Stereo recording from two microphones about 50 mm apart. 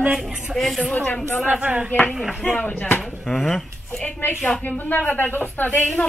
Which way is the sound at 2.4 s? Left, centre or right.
Centre.